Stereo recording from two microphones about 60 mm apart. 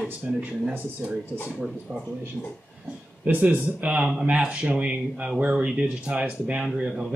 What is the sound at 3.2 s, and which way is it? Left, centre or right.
Speech, right.